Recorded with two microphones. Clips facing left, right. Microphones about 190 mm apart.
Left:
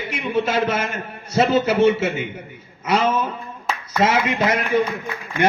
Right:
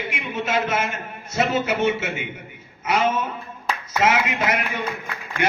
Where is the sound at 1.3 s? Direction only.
30° left (ahead or behind).